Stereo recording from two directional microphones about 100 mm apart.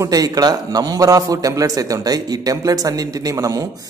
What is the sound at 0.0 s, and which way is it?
Speech, 40° right (ahead or behind).